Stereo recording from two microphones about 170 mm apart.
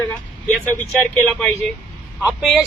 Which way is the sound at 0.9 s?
Centre (ahead or behind).